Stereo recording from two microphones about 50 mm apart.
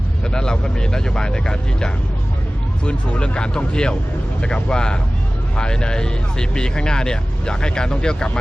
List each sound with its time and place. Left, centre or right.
0.3 s speech: centre